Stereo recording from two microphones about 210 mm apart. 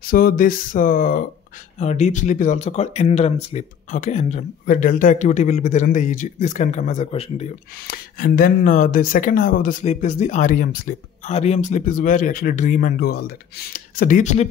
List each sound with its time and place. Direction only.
0.0 s speech: 45° left (ahead or behind)
7.8 s speech: 45° left (ahead or behind)